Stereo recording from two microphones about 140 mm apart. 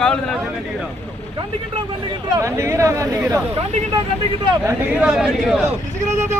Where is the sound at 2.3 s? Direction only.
20° right (ahead or behind).